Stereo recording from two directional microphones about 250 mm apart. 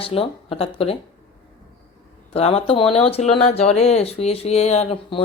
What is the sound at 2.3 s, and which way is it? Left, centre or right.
Speech, left.